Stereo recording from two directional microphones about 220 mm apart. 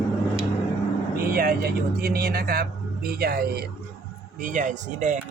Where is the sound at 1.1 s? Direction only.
45° right (ahead or behind).